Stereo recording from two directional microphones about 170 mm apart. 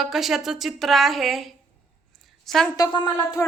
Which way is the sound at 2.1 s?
Centre (ahead or behind).